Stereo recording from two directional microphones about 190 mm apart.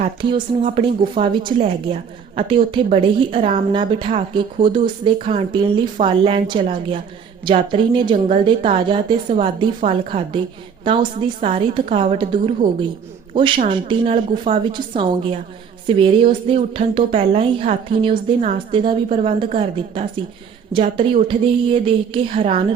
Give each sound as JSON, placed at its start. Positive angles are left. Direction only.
{"t": 0.0, "sound": "a woman's voice", "side_deg": -25}